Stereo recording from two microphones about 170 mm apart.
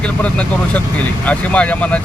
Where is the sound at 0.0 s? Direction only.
5° left (ahead or behind).